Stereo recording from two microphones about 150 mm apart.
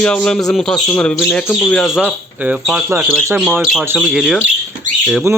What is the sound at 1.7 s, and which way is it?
Speech, centre (ahead or behind).